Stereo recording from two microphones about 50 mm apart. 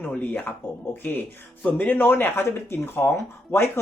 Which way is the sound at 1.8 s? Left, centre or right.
Left.